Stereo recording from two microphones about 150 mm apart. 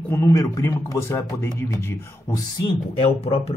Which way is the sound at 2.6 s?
40° left (ahead or behind).